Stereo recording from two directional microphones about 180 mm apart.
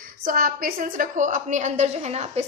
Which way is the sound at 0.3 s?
50° right (ahead or behind).